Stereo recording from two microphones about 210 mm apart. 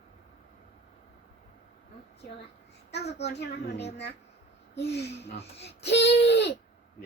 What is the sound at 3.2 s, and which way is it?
A child's voice, 55° left (ahead or behind).